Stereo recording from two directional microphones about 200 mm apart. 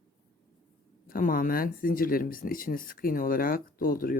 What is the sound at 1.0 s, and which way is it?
Speech, 45° left (ahead or behind).